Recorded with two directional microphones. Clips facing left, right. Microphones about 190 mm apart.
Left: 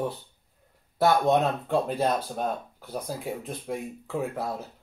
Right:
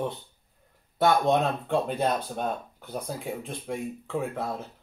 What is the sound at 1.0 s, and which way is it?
Speech, centre (ahead or behind).